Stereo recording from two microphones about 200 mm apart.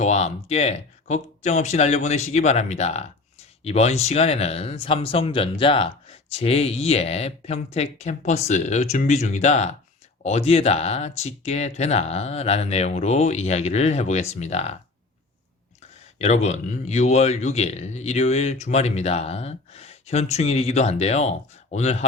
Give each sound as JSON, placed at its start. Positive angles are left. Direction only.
{"t": 0.0, "sound": "speech", "side_deg": 35}
{"t": 16.1, "sound": "speech", "side_deg": 35}